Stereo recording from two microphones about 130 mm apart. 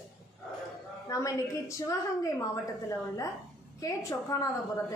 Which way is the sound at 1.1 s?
25° left (ahead or behind).